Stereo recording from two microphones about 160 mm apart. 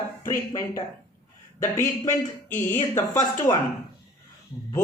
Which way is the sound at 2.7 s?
15° left (ahead or behind).